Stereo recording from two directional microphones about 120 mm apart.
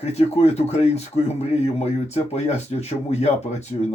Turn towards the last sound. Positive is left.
turn(degrees=65)  # may be behind; listen again after turning